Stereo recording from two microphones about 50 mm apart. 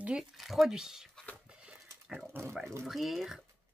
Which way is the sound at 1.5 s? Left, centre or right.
Centre.